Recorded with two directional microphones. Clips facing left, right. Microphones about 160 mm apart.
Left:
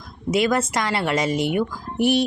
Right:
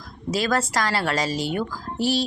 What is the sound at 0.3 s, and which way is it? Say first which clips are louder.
Speech: left 3 dB; 20° left (ahead or behind).